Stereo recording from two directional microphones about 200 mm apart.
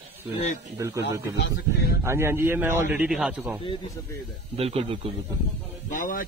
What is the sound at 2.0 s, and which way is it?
Speech, 10° right (ahead or behind).